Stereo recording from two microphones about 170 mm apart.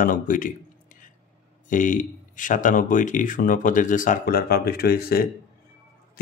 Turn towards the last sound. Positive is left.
turn(degrees=65)  # may be behind; listen again after turning